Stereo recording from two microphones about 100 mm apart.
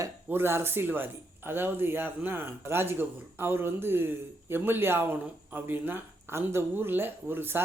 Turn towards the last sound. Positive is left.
turn(degrees=-20)  # may be behind; listen again after turning